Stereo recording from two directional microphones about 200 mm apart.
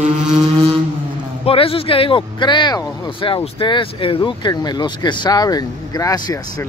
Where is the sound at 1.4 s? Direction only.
25° left (ahead or behind).